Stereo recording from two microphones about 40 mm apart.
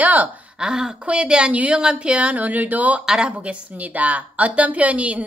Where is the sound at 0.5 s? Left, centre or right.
Centre.